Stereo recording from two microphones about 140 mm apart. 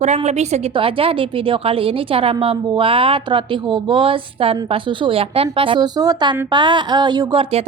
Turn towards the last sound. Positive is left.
turn(degrees=-35)  # may be behind; listen again after turning